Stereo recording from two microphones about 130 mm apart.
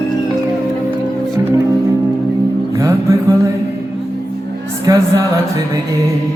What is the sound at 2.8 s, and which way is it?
Music, 25° right (ahead or behind).